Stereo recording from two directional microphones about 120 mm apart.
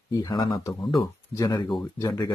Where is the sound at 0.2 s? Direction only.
35° left (ahead or behind).